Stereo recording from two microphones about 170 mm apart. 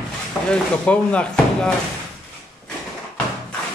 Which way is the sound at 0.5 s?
5° left (ahead or behind).